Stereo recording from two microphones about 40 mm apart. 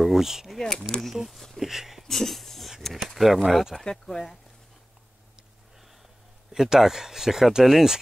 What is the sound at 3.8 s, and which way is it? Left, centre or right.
Speech, centre.